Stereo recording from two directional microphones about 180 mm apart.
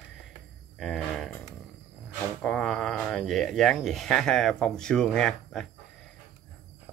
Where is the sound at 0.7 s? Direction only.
5° left (ahead or behind).